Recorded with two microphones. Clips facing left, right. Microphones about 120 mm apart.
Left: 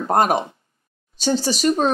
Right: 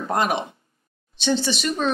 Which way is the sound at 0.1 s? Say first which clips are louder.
Left 5 dB; 45° left (ahead or behind).